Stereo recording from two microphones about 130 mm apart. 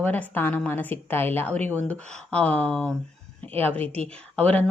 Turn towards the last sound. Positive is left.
turn(degrees=10)  # may be behind; listen again after turning